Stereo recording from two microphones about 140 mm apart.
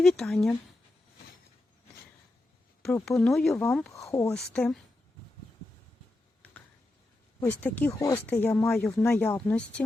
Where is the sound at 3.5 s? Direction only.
15° left (ahead or behind).